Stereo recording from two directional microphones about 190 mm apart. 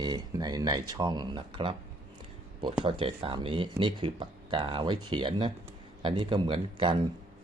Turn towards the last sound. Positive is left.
turn(degrees=-25)  # may be behind; listen again after turning